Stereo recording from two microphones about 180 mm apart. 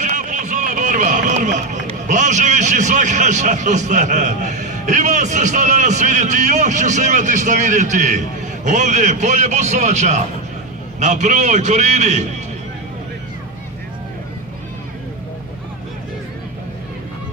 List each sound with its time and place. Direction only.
0.0 s a man's voice: 45° right (ahead or behind)